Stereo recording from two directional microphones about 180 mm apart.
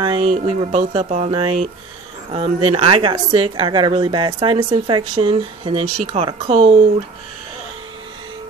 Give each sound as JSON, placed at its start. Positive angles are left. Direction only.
{"t": 0.0, "sound": "a woman's voice", "side_deg": -30}